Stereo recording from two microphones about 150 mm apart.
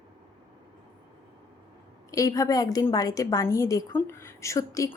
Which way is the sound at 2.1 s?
20° left (ahead or behind).